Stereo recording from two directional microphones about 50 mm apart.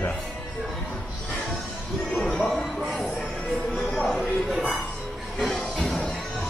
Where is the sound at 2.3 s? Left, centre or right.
Centre.